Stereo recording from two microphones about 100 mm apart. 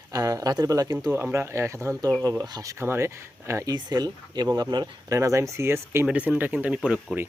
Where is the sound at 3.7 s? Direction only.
40° right (ahead or behind).